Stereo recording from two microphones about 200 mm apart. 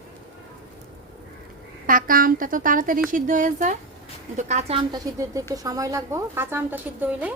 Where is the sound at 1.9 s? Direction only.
45° right (ahead or behind).